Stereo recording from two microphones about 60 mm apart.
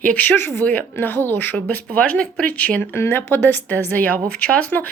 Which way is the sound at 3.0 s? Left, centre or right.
Left.